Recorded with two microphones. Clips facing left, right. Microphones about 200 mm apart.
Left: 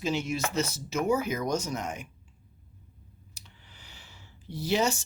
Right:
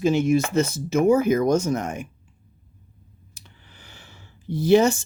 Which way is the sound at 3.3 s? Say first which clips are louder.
Right 5 dB; 50° right (ahead or behind).